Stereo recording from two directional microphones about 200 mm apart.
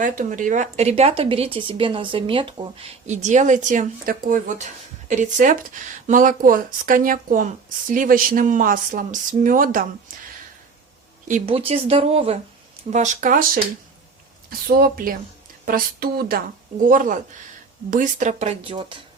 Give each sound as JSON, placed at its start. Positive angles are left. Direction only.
{"t": 0.0, "sound": "speech", "side_deg": -40}
{"t": 11.3, "sound": "speech", "side_deg": -35}
{"t": 14.7, "sound": "speech", "side_deg": -45}